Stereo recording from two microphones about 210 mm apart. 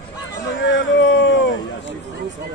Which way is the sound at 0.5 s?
60° left (ahead or behind).